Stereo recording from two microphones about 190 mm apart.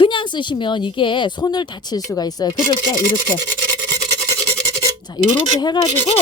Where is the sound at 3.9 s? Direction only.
20° right (ahead or behind).